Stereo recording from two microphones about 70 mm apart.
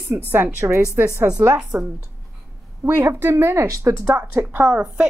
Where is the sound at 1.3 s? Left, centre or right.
Left.